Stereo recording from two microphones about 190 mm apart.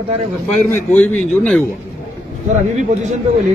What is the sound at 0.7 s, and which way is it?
Speech, 10° left (ahead or behind).